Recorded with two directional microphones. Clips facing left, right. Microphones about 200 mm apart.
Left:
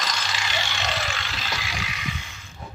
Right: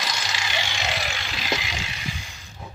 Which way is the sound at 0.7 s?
15° right (ahead or behind).